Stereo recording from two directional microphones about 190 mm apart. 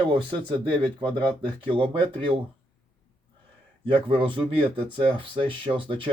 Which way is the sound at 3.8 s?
25° right (ahead or behind).